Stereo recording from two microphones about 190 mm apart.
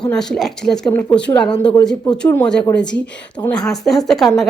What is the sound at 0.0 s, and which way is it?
A woman's voice, 5° left (ahead or behind).